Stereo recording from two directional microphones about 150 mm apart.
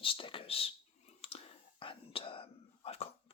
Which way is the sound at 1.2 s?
40° left (ahead or behind).